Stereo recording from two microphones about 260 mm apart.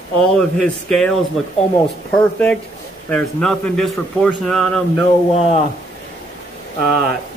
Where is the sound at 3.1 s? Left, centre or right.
Centre.